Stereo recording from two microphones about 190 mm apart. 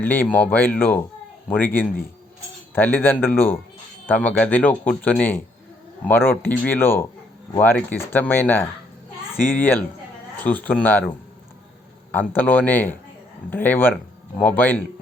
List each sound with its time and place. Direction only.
0.0 s speech: 10° left (ahead or behind)
12.1 s speech: 10° left (ahead or behind)